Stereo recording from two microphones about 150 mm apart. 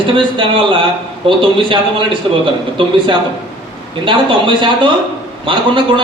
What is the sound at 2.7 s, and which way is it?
A man's voice, 30° right (ahead or behind).